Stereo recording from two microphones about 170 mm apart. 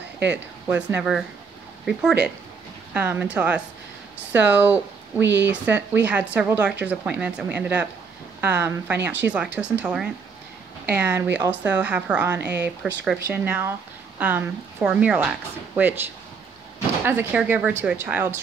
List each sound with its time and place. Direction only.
0.3 s a woman's voice: 10° right (ahead or behind)
2.9 s a woman's voice: 10° right (ahead or behind)
5.2 s speech: 90° right
5.5 s a woman's voice: 10° right (ahead or behind)